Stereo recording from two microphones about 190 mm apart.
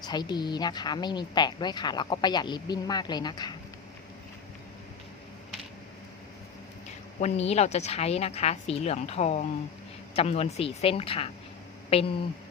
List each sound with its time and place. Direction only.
0.0 s a woman's voice: 20° left (ahead or behind)
7.2 s a woman's voice: 35° left (ahead or behind)